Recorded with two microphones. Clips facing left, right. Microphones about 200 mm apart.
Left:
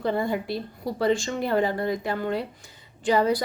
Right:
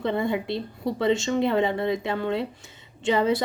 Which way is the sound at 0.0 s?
25° right (ahead or behind).